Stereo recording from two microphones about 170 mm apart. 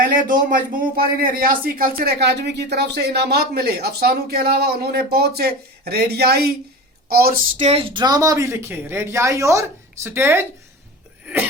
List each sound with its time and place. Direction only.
0.0 s speech: 50° right (ahead or behind); by 6.5 s 70° right (ahead or behind)
7.1 s a sound: 60° right (ahead or behind)
7.6 s speech: 35° right (ahead or behind); by 10.4 s 15° right (ahead or behind)